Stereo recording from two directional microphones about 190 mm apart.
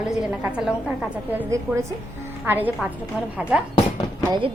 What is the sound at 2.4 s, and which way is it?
A woman's voice, 10° right (ahead or behind).